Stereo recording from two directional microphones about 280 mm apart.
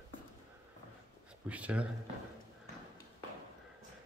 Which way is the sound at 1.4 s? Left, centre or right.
Centre.